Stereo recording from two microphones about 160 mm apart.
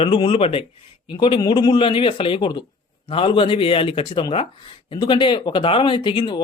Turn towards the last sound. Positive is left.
turn(degrees=30)  # may be behind; listen again after turning